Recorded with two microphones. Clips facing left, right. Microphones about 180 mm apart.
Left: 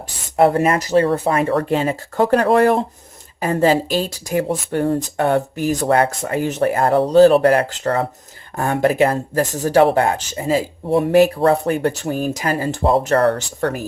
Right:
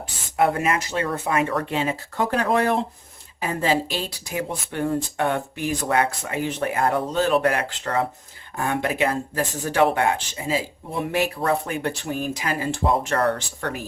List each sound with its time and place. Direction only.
0.3 s speech: 40° left (ahead or behind)